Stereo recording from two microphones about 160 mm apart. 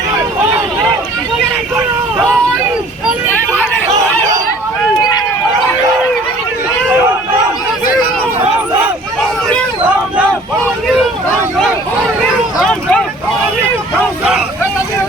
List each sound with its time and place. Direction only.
4.9 s run: 25° left (ahead or behind)
12.5 s vehicle: 5° left (ahead or behind)